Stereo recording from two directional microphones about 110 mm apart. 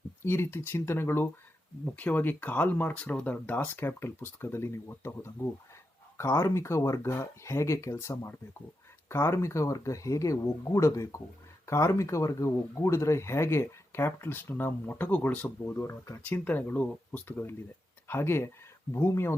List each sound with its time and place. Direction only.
0.2 s speech: 20° left (ahead or behind)
16.2 s speech: 15° left (ahead or behind)